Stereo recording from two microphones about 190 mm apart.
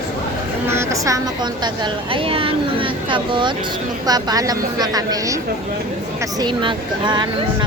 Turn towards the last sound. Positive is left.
turn(degrees=-25)  # may be behind; listen again after turning